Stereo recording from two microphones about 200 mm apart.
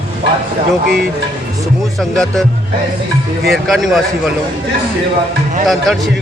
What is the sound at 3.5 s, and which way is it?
Speech, centre (ahead or behind).